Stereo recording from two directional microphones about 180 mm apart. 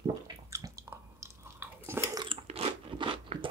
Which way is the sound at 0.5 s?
15° right (ahead or behind).